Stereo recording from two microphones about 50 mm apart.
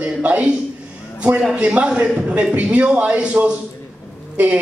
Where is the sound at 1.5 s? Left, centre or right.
Right.